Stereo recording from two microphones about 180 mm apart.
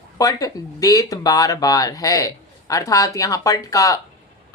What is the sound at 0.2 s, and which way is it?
Speech, 20° left (ahead or behind).